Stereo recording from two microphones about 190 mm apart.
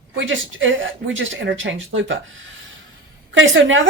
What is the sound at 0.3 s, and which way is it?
Speech, 85° right.